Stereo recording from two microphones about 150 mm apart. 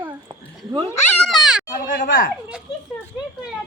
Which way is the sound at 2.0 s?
65° left (ahead or behind).